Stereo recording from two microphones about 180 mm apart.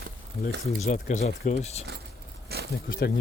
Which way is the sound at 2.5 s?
60° right (ahead or behind).